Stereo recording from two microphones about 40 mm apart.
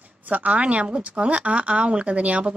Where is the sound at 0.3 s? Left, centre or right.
Right.